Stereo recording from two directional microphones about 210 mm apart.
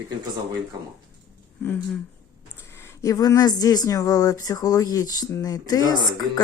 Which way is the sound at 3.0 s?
15° left (ahead or behind).